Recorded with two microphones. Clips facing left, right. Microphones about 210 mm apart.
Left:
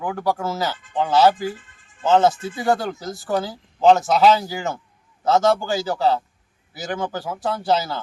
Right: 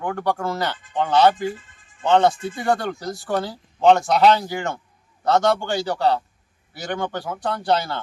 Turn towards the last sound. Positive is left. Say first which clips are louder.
# left 1 dB
turn(degrees=5)  # may be behind; listen again after turning